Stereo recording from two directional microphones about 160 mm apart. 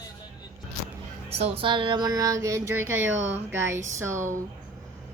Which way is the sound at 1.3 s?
35° right (ahead or behind).